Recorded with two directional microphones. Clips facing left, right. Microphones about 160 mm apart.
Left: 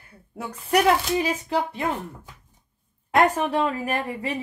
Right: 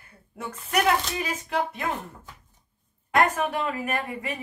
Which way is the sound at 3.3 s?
35° left (ahead or behind).